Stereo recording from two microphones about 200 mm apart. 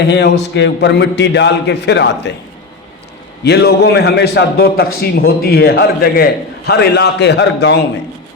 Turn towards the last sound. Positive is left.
turn(degrees=60)  # may be behind; listen again after turning